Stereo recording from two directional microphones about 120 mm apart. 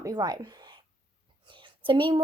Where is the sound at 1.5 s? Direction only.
45° right (ahead or behind).